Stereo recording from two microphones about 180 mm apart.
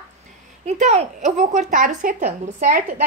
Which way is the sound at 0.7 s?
40° right (ahead or behind).